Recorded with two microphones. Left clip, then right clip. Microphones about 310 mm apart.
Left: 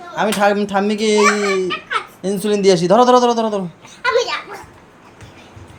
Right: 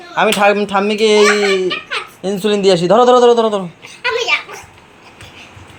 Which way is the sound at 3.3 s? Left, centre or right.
Centre.